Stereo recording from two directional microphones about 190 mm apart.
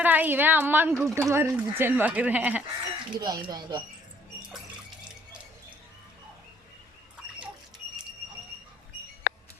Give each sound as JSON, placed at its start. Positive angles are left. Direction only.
{"t": 0.0, "sound": "speech", "side_deg": -10}
{"t": 3.2, "sound": "speech", "side_deg": -20}
{"t": 9.2, "sound": "a sound", "side_deg": 60}